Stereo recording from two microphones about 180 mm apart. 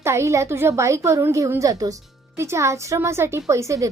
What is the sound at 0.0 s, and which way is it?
A woman's voice, 15° right (ahead or behind).